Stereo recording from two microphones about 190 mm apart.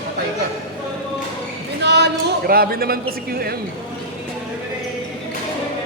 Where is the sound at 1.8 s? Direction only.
60° right (ahead or behind).